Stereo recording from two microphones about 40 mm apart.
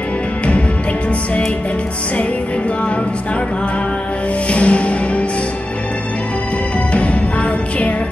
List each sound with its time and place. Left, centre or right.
4.5 s music: left
6.9 s music: left